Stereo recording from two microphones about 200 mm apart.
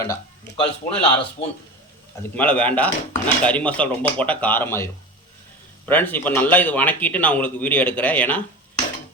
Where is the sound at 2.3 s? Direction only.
10° left (ahead or behind).